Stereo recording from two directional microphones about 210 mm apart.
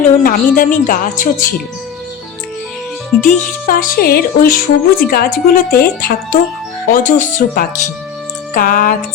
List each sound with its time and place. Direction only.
0.2 s a woman's voice: 40° left (ahead or behind)
3.2 s a woman's voice: 40° left (ahead or behind)